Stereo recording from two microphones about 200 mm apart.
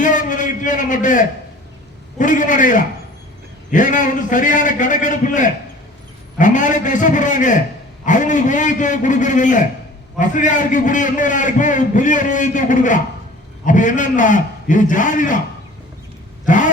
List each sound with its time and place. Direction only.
0.0 s a sound: 40° left (ahead or behind)
2.1 s a man's voice: 40° left (ahead or behind)
16.5 s a man's voice: 40° left (ahead or behind)